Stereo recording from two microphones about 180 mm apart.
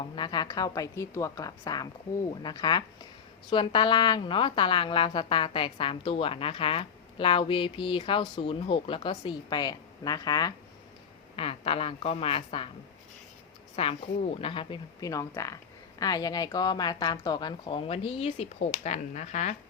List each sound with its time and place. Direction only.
0.0 s a woman's voice: 25° left (ahead or behind)
11.3 s a woman's voice: 30° left (ahead or behind)
13.8 s a woman's voice: 35° left (ahead or behind)